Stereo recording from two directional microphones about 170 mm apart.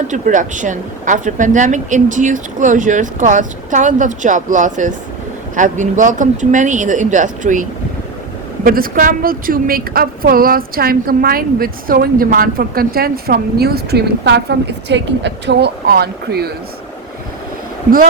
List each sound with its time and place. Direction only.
0.1 s a woman's voice: 50° right (ahead or behind); by 16.5 s 65° right (ahead or behind)